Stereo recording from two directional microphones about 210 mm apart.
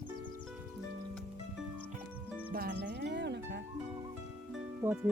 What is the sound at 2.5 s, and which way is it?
Music, 50° right (ahead or behind).